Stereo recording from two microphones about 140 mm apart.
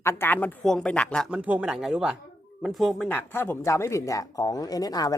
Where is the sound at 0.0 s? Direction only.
15° left (ahead or behind).